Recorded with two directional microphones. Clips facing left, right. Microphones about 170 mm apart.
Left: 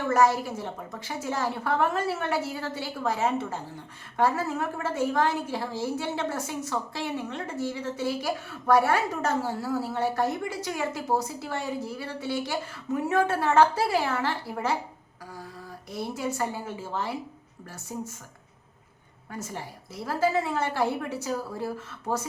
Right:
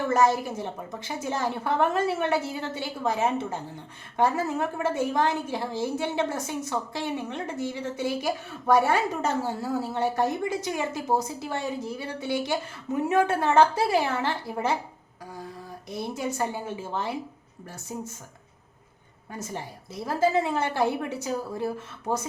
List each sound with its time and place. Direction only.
0.1 s a woman's voice: 20° right (ahead or behind)
16.1 s a woman's voice: 20° right (ahead or behind)
19.9 s a woman's voice: 20° right (ahead or behind)